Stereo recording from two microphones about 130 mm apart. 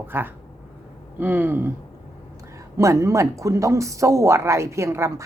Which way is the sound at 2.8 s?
25° right (ahead or behind).